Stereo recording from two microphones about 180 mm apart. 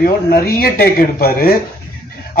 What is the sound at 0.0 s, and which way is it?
Speech, 60° left (ahead or behind).